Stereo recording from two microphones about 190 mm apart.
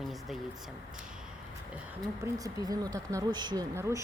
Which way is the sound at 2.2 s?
20° right (ahead or behind).